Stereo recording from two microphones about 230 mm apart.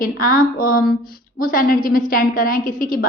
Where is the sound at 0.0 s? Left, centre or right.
Left.